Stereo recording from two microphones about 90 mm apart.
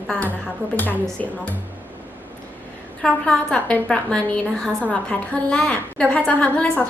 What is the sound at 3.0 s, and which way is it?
A woman's voice, 10° left (ahead or behind).